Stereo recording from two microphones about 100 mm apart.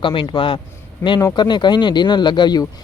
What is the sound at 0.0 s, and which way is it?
Speech, 60° left (ahead or behind).